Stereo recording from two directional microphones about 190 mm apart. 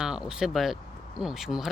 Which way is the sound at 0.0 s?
5° right (ahead or behind).